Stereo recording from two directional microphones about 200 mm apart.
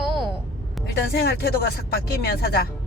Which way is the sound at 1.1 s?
55° left (ahead or behind).